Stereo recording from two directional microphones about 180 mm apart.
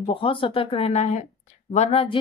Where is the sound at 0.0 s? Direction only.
30° left (ahead or behind).